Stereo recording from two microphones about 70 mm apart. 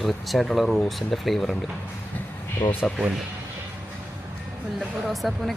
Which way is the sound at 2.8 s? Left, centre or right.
Centre.